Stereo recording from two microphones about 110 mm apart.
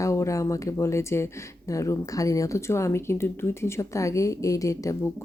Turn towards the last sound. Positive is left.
turn(degrees=30)  # may be behind; listen again after turning